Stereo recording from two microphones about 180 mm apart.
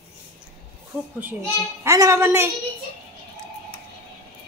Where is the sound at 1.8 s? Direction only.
15° right (ahead or behind).